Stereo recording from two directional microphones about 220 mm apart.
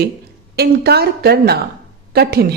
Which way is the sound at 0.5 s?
45° right (ahead or behind).